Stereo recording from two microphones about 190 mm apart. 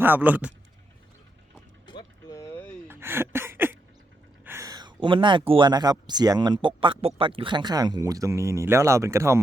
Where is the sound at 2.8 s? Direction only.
10° right (ahead or behind).